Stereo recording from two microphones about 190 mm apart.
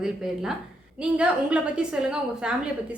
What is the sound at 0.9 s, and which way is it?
A woman's voice, 5° right (ahead or behind).